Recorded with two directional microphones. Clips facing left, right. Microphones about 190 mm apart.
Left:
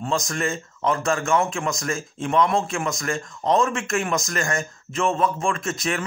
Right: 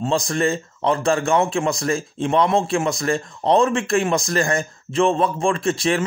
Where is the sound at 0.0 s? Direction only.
30° right (ahead or behind).